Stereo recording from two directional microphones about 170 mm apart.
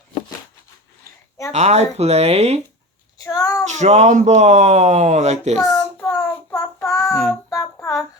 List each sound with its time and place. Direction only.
1.5 s speech: 40° right (ahead or behind)
3.2 s a sound: 20° left (ahead or behind)
3.7 s speech: 45° right (ahead or behind)
5.6 s child singing: 20° left (ahead or behind)